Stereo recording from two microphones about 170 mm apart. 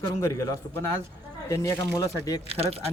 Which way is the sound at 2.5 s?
35° right (ahead or behind).